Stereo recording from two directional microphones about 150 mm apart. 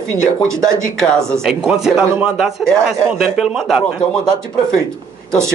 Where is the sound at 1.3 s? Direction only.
Centre (ahead or behind).